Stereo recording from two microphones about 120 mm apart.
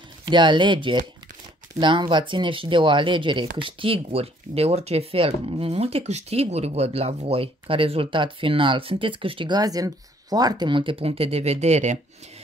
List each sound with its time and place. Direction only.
0.3 s speech: 40° right (ahead or behind); by 12.0 s 70° right (ahead or behind)